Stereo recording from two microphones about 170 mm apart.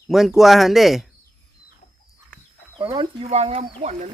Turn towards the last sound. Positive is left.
turn(degrees=-40)  # may be behind; listen again after turning